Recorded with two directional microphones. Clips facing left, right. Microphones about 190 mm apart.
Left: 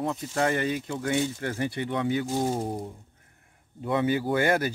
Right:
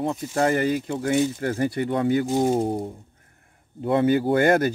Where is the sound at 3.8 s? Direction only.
50° right (ahead or behind).